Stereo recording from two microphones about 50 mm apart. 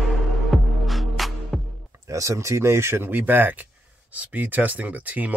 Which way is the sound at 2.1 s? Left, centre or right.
Right.